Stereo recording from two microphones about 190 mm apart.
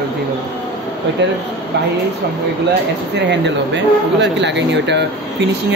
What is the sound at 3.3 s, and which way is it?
Speech, 70° right (ahead or behind).